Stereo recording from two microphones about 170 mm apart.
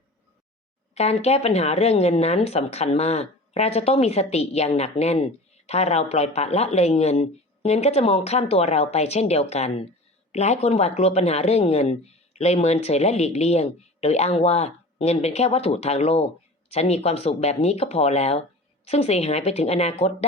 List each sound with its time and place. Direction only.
0.9 s speech: 40° left (ahead or behind)